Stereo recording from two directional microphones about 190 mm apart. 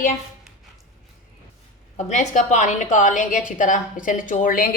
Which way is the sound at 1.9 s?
40° left (ahead or behind).